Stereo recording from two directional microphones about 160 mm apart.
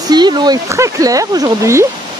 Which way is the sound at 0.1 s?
25° right (ahead or behind).